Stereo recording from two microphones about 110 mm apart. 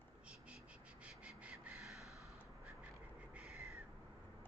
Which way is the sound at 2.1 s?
30° left (ahead or behind).